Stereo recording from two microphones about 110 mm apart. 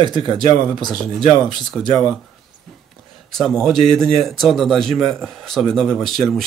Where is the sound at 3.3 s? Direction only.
5° left (ahead or behind).